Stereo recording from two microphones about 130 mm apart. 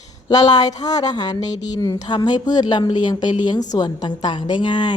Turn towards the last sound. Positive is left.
turn(degrees=35)  # may be behind; listen again after turning